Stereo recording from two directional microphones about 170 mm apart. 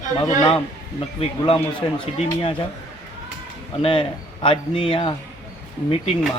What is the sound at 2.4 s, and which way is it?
Speech, 30° left (ahead or behind).